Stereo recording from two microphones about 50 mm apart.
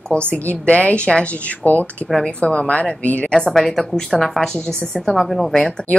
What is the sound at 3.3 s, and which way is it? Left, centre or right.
Speech, centre.